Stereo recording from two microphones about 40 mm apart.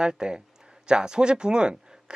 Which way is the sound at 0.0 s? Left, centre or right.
Centre.